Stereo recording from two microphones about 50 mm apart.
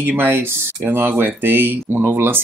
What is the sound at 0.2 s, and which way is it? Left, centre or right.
Speech, right.